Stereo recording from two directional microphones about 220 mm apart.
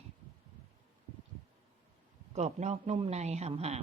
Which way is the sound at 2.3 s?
30° right (ahead or behind).